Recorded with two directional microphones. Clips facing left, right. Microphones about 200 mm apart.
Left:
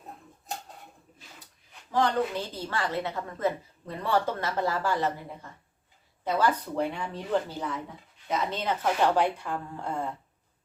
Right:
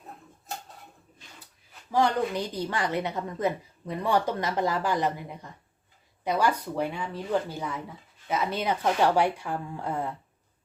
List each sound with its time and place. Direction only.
1.9 s a woman's voice: 10° right (ahead or behind)